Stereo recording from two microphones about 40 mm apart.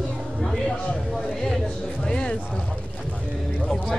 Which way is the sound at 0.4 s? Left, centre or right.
Centre.